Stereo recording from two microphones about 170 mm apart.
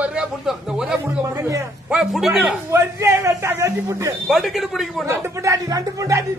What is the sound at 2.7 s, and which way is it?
Speech, 15° right (ahead or behind).